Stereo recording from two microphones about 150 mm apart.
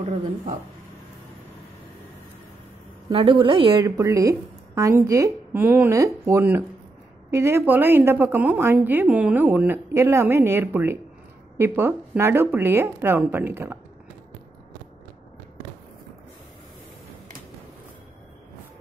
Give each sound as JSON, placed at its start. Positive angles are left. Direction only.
{"t": 3.1, "sound": "a woman's voice", "side_deg": -35}
{"t": 3.8, "sound": "a woman's voice", "side_deg": -20}